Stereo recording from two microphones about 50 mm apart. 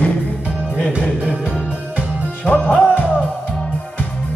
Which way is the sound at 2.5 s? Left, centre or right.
Left.